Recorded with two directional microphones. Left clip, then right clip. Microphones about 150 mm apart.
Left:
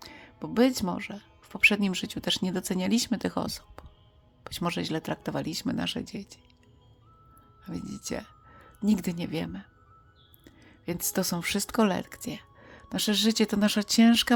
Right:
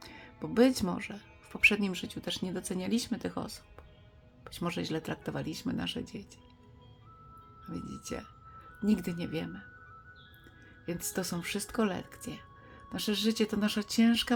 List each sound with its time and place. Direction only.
0.0 s speech: 25° left (ahead or behind)
7.6 s speech: 40° left (ahead or behind)
10.8 s speech: 35° left (ahead or behind)